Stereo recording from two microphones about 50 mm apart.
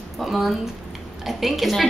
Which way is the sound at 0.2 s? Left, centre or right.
Centre.